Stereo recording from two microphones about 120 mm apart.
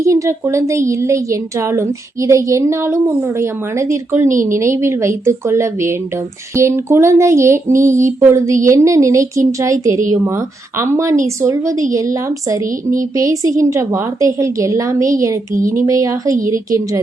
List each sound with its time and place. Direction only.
0.0 s a woman's voice: 25° right (ahead or behind)
7.9 s a sound: 90° right
8.3 s a woman's voice: 25° right (ahead or behind)
10.8 s a woman's voice: 20° right (ahead or behind)